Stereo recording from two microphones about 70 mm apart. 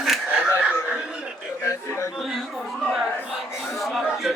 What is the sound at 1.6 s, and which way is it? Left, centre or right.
Music, left.